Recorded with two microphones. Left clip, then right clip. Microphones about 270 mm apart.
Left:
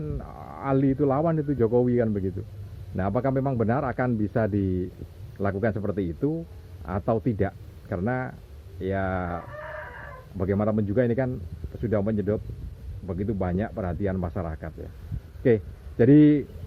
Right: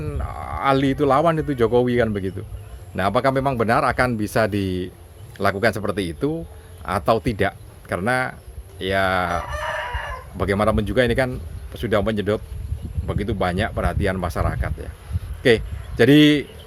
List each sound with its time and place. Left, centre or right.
0.0 s a man's voice: right